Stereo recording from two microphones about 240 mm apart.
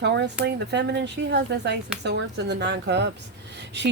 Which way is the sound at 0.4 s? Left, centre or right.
Right.